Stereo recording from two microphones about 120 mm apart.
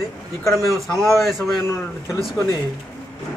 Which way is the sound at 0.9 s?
Centre (ahead or behind).